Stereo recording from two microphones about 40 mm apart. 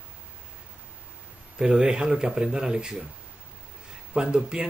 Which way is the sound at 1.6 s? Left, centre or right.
Centre.